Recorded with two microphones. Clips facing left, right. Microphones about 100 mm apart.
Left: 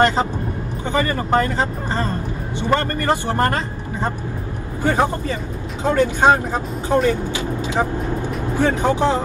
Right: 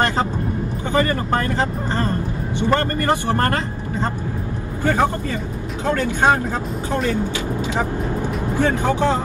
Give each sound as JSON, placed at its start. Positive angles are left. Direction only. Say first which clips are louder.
{"t": 0.0, "sound": "speech", "louder": "left 3 dB", "side_deg": 20}
{"t": 8.5, "sound": "speech", "louder": "left 1 dB", "side_deg": 15}